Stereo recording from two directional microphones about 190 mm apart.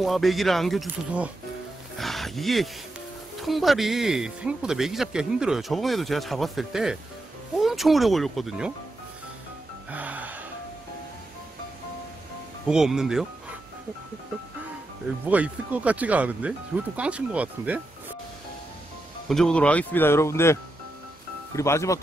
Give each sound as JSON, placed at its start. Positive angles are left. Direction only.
{"t": 0.0, "sound": "speech", "side_deg": 0}
{"t": 9.8, "sound": "music", "side_deg": -10}
{"t": 12.6, "sound": "speech", "side_deg": -5}
{"t": 15.2, "sound": "speech", "side_deg": -10}
{"t": 19.2, "sound": "speech", "side_deg": 5}
{"t": 21.5, "sound": "speech", "side_deg": 15}